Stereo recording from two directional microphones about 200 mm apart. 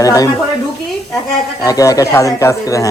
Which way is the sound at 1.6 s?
15° left (ahead or behind).